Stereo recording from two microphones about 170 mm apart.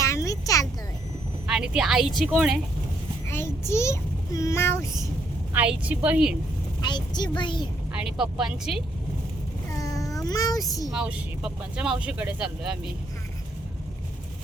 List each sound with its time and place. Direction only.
0.0 s a sound: 20° left (ahead or behind)
1.5 s speech: 5° right (ahead or behind)
3.2 s a child's voice: 15° left (ahead or behind)
5.5 s speech: 10° right (ahead or behind)
6.8 s a woman's voice: 25° left (ahead or behind)
7.9 s speech: 5° right (ahead or behind)
9.7 s a sound: 20° left (ahead or behind)
10.8 s speech: 5° right (ahead or behind)